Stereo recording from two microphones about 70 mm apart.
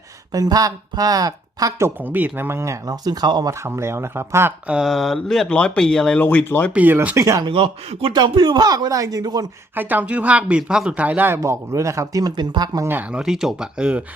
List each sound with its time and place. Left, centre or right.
0.3 s speech: right
2.0 s speech: right
2.8 s speech: right
3.6 s speech: right
4.7 s speech: centre
6.1 s speech: left
6.7 s speech: right
7.2 s speech: right
8.1 s speech: right
9.7 s speech: right
10.6 s speech: centre
11.3 s speech: right
12.2 s speech: right
13.1 s speech: centre